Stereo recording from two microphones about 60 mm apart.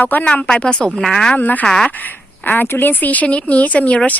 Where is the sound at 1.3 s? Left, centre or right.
Left.